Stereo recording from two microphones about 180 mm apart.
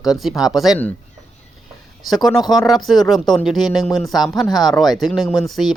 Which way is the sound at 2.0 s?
Centre (ahead or behind).